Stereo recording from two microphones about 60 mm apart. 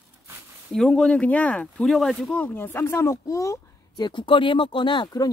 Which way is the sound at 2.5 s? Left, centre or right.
Left.